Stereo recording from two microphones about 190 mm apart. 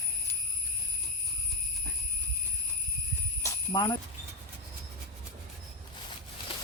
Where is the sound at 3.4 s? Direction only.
20° left (ahead or behind).